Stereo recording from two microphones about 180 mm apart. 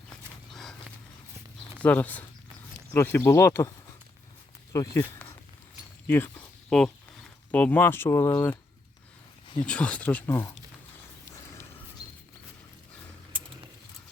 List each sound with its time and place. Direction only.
0.5 s a sound: centre (ahead or behind)
1.8 s speech: 10° left (ahead or behind)
4.7 s speech: 15° left (ahead or behind)
9.6 s speech: 5° left (ahead or behind)